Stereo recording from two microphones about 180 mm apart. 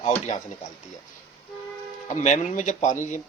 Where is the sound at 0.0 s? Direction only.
40° left (ahead or behind).